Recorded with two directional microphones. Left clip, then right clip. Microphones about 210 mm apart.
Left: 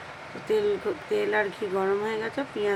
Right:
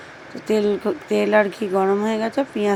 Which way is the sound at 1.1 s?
35° right (ahead or behind).